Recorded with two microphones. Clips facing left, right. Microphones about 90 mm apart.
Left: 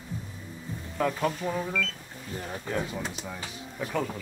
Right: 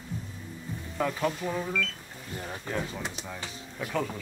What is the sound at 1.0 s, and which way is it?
Speech, 5° left (ahead or behind).